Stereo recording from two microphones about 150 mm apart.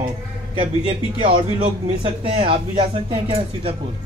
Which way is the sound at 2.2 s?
35° right (ahead or behind).